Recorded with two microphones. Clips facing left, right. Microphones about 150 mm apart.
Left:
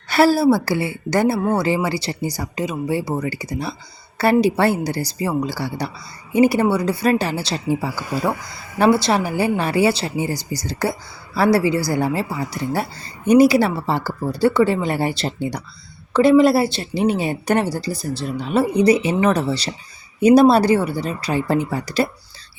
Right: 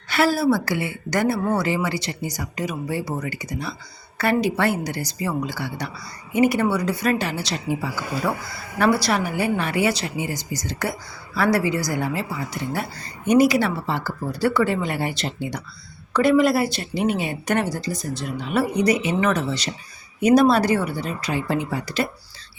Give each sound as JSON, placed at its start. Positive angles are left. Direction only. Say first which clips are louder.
{"t": 0.1, "sound": "a woman's voice", "louder": "left 5 dB", "side_deg": 35}